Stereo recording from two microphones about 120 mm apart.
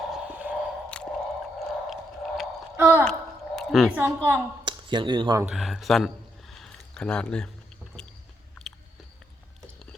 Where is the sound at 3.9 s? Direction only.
20° right (ahead or behind).